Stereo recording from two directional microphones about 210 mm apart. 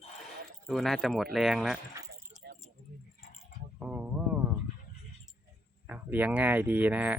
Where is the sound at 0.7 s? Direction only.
Centre (ahead or behind).